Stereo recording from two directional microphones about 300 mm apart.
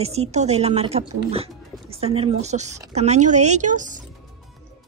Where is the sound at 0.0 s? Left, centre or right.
Right.